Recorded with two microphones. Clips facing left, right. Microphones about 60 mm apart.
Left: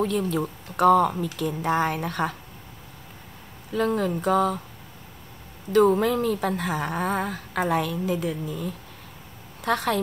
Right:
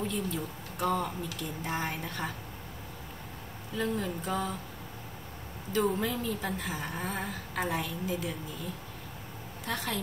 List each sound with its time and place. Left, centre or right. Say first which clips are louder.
0.0 s speech: left 9 dB; left
3.7 s speech: left 8 dB; left
5.7 s speech: left 10 dB; left
9.7 s speech: left 11 dB; left